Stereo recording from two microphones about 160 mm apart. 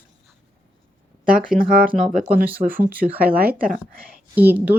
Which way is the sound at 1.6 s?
65° right (ahead or behind).